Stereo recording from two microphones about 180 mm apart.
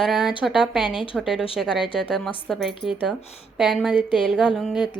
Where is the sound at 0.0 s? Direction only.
Centre (ahead or behind).